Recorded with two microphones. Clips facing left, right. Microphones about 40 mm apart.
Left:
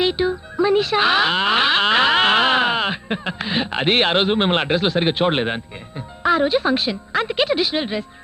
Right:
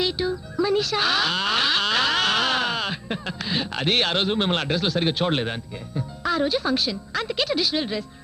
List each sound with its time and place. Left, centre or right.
0.0 s speech: left